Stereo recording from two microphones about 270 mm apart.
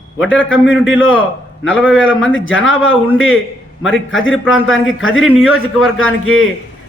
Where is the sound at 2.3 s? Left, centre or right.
Left.